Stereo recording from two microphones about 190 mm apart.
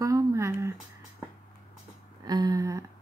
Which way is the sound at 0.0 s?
15° right (ahead or behind).